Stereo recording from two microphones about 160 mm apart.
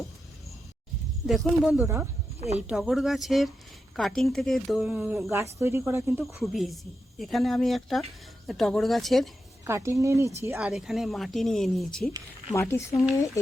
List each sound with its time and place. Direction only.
1.3 s speech: centre (ahead or behind)
1.8 s speech: 15° right (ahead or behind)
6.2 s speech: centre (ahead or behind)
9.6 s speech: 20° right (ahead or behind)
10.6 s speech: 5° right (ahead or behind)
12.5 s speech: 15° left (ahead or behind)